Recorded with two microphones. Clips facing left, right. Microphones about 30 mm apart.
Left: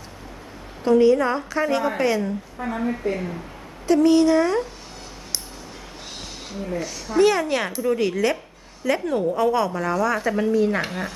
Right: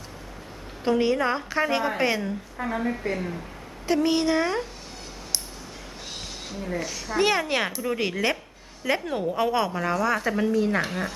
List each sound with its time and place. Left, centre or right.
0.9 s a woman's voice: centre
2.2 s a woman's voice: centre
3.8 s a woman's voice: centre
6.8 s speech: centre
7.9 s a woman's voice: centre